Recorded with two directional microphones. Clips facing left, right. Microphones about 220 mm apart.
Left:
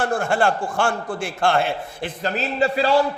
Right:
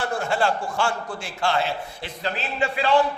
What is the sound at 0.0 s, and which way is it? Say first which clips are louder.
A man's voice: left 4 dB; 50° left (ahead or behind).